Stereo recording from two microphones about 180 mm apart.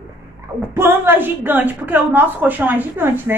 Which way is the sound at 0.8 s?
10° right (ahead or behind).